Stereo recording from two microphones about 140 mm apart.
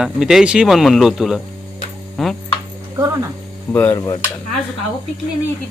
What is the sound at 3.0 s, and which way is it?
Speech, 25° right (ahead or behind).